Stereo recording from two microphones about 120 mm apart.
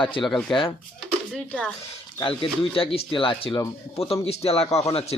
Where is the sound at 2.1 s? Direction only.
45° left (ahead or behind).